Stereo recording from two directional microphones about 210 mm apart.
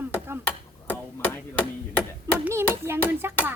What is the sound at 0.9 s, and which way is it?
Chop, 10° left (ahead or behind).